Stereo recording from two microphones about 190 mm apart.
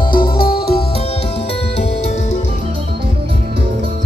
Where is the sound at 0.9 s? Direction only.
30° left (ahead or behind).